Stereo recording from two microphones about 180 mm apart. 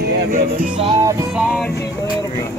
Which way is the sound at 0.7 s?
30° right (ahead or behind).